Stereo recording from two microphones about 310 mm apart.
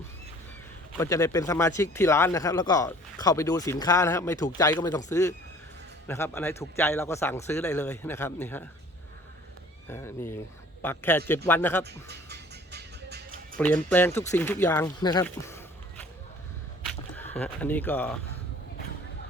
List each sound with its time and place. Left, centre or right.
0.9 s speech: centre
6.1 s speech: centre
9.9 s speech: centre
11.9 s music: right
13.6 s speech: centre
16.8 s a sound: centre
17.4 s speech: centre